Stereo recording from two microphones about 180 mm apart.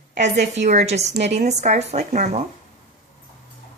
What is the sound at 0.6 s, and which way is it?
A woman's voice, 40° right (ahead or behind).